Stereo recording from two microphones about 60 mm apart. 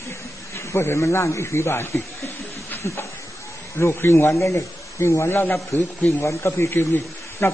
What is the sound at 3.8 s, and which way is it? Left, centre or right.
Speech, left.